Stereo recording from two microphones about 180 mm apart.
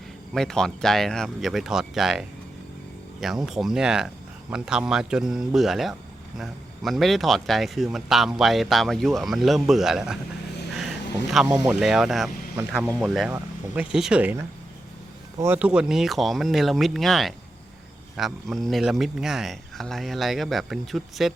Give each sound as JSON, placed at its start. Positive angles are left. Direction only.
{"t": 0.3, "sound": "speech", "side_deg": 5}
{"t": 10.8, "sound": "bee", "side_deg": 0}
{"t": 11.7, "sound": "speech", "side_deg": 0}